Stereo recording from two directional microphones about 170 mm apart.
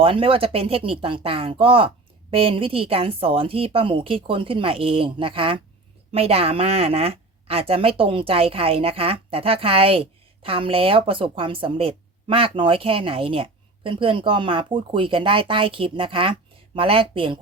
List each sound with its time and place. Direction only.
0.0 s a woman's voice: 35° right (ahead or behind)